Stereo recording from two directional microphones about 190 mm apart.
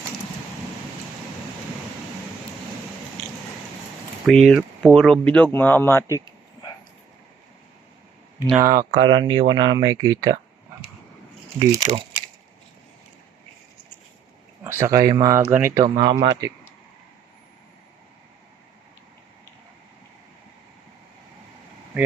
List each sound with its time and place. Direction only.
4.3 s speech: centre (ahead or behind)
8.5 s speech: 20° right (ahead or behind)
11.7 s speech: 20° right (ahead or behind)
14.6 s speech: 15° right (ahead or behind)
15.8 s speech: 25° right (ahead or behind)